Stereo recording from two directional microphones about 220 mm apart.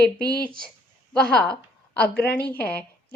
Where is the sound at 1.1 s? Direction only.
5° left (ahead or behind).